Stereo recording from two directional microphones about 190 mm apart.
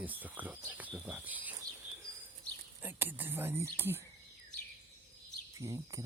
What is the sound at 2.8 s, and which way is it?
Speech, 10° right (ahead or behind).